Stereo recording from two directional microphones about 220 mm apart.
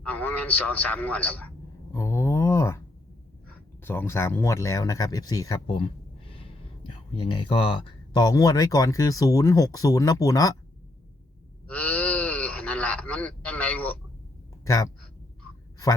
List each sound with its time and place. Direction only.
0.0 s a man's voice: 5° left (ahead or behind)
1.9 s a sound: 15° left (ahead or behind)
3.8 s speech: 10° left (ahead or behind)
7.4 s speech: 20° left (ahead or behind)
11.7 s a sound: 5° left (ahead or behind)
14.6 s speech: 15° left (ahead or behind)